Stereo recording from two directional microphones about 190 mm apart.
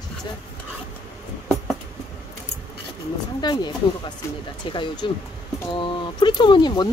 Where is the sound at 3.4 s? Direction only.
20° left (ahead or behind).